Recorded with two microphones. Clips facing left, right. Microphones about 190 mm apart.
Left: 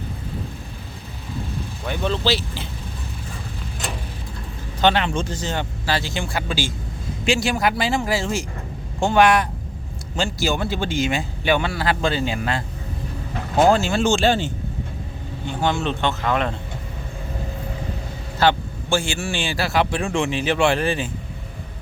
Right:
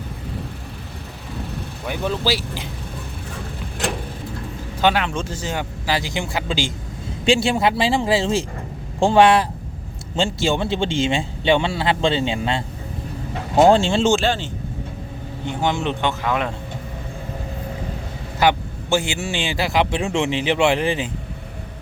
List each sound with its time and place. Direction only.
1.8 s a man's voice: 10° right (ahead or behind)
4.8 s a man's voice: 5° right (ahead or behind); by 12.6 s 25° right (ahead or behind)
13.7 s a man's voice: 30° right (ahead or behind)
14.2 s speech: 5° left (ahead or behind)
15.4 s a man's voice: 20° right (ahead or behind)
18.3 s a man's voice: 15° right (ahead or behind)